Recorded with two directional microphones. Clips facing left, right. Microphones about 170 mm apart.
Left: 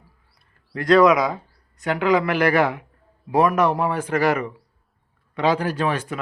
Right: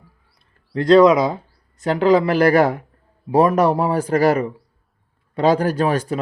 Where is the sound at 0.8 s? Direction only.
25° right (ahead or behind).